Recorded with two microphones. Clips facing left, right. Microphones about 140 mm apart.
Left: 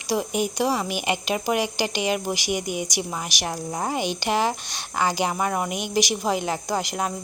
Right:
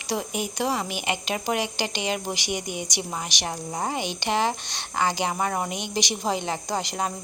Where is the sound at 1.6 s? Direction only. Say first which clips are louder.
Left 4 dB; 20° right (ahead or behind).